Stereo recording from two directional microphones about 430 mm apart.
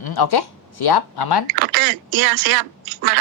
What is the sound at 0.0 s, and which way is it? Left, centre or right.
Speech, left.